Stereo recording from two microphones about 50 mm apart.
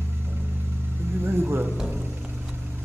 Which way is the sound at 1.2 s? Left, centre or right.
Right.